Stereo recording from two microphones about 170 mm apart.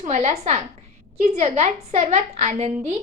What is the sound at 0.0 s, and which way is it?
A woman's voice, 40° right (ahead or behind).